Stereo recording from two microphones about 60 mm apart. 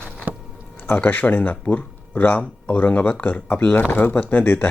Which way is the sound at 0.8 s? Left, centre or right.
Left.